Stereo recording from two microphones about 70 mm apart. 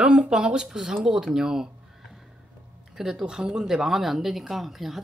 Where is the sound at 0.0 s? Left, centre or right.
Centre.